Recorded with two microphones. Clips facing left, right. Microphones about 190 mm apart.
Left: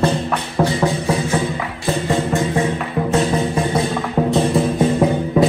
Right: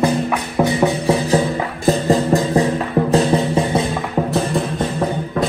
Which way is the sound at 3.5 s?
20° right (ahead or behind).